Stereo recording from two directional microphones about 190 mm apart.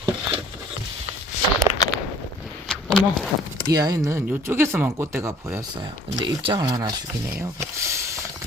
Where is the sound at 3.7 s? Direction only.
20° right (ahead or behind).